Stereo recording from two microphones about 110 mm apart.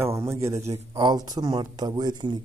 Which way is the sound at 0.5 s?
85° right.